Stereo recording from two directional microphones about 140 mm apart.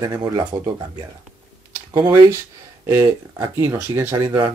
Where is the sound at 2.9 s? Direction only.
15° right (ahead or behind).